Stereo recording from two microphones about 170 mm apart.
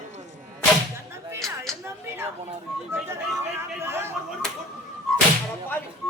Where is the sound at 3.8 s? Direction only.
15° right (ahead or behind).